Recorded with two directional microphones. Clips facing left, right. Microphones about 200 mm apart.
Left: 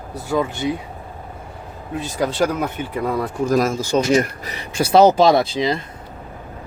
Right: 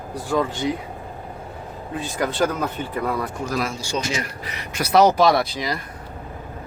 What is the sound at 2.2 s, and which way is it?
Speech, 15° left (ahead or behind).